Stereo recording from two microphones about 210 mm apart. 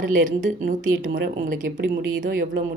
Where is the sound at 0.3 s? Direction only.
40° right (ahead or behind).